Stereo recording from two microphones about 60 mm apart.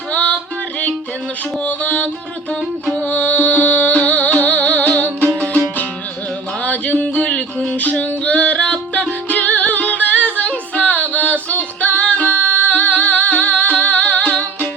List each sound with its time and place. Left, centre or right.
0.1 s music: left
1.6 s music: left
6.6 s music: left